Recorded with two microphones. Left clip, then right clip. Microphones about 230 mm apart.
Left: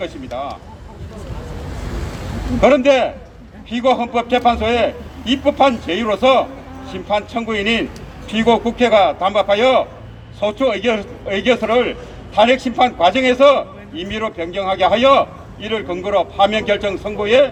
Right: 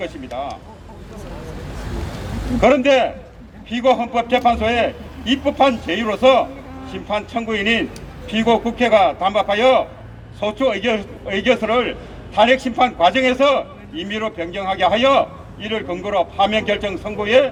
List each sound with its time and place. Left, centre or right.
0.0 s a man's voice: right
2.6 s a man's voice: right